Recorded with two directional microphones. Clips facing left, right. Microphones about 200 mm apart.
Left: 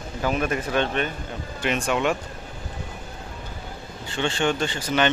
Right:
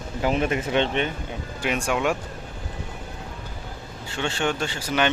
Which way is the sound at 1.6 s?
10° right (ahead or behind).